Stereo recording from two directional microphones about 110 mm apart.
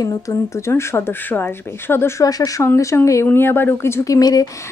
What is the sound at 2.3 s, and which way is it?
Speech, 35° left (ahead or behind).